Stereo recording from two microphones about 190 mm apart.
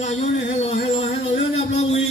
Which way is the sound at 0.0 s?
35° left (ahead or behind).